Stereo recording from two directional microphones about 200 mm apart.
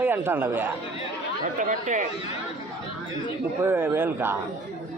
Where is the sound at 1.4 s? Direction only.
40° right (ahead or behind).